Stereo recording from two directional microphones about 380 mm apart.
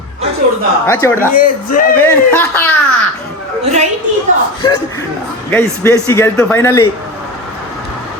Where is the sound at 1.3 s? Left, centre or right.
Left.